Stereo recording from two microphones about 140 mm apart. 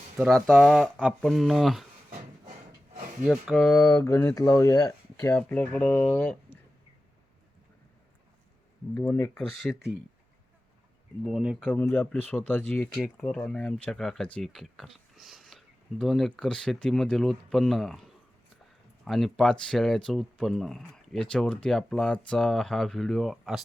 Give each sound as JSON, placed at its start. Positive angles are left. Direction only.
{"t": 0.2, "sound": "speech", "side_deg": 0}
{"t": 3.2, "sound": "speech", "side_deg": 0}
{"t": 3.8, "sound": "speech", "side_deg": 20}
{"t": 5.3, "sound": "speech", "side_deg": 10}
{"t": 9.0, "sound": "speech", "side_deg": 20}
{"t": 9.3, "sound": "speech", "side_deg": 0}
{"t": 11.3, "sound": "speech", "side_deg": -5}
{"t": 11.7, "sound": "speech", "side_deg": 10}